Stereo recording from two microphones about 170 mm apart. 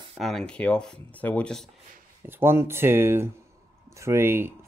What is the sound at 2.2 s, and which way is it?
Rub, 15° right (ahead or behind).